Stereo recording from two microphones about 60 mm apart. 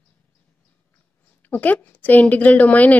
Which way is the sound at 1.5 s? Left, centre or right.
Left.